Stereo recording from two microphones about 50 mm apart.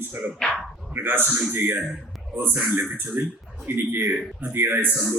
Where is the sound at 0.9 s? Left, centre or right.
Right.